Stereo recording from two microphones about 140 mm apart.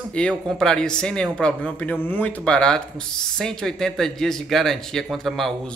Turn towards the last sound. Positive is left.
turn(degrees=0)  # may be behind; listen again after turning